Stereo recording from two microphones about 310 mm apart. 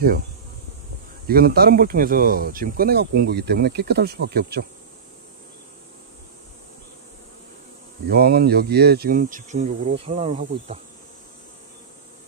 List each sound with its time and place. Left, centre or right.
1.2 s speech: right
8.1 s speech: right